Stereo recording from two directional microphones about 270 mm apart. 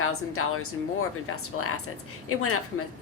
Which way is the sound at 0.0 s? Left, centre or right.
Left.